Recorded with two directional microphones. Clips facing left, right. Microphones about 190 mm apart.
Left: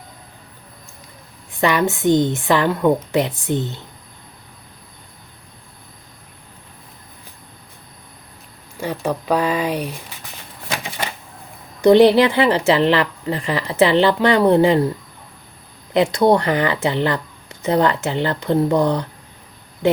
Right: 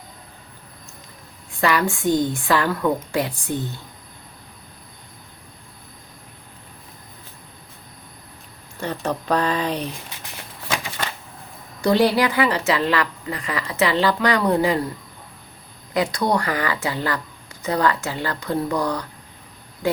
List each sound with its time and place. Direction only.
1.6 s speech: 20° left (ahead or behind)
8.8 s speech: 10° left (ahead or behind)
11.8 s speech: 20° left (ahead or behind)
15.9 s speech: 25° left (ahead or behind)